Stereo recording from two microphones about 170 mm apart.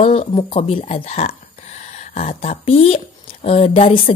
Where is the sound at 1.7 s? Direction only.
40° left (ahead or behind).